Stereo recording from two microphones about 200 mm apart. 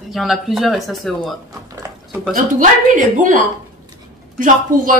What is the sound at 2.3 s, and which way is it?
A man's voice, 40° right (ahead or behind).